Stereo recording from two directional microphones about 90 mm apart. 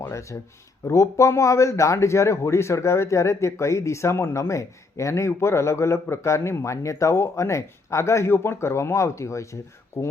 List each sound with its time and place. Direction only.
0.1 s speech: 35° left (ahead or behind)